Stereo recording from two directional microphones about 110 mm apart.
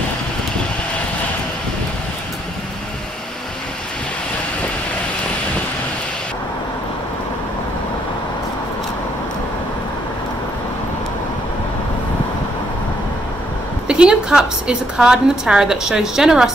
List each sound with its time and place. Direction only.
13.8 s a woman's voice: 10° right (ahead or behind)